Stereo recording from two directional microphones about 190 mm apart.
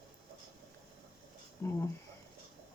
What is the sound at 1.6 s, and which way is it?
Speech, 15° left (ahead or behind).